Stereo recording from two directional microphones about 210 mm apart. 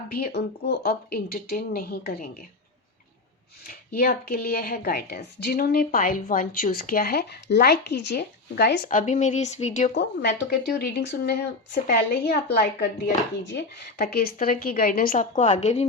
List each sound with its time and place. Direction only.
0.1 s a woman's voice: 50° left (ahead or behind)
3.9 s a woman's voice: 45° left (ahead or behind)
9.9 s a woman's voice: 50° left (ahead or behind)
14.0 s a woman's voice: 45° left (ahead or behind); by 15.9 s 30° left (ahead or behind)